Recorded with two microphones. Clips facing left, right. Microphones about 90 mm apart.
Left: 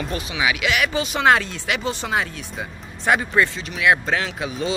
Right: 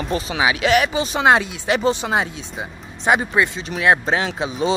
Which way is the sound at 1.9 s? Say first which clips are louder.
Right 3 dB; 20° right (ahead or behind).